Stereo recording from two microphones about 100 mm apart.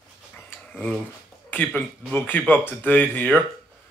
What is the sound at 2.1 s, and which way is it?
Speech, 20° left (ahead or behind).